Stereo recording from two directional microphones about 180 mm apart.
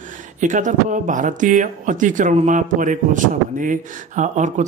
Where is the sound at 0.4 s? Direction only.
45° right (ahead or behind).